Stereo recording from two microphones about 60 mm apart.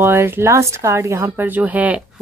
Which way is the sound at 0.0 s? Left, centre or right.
Right.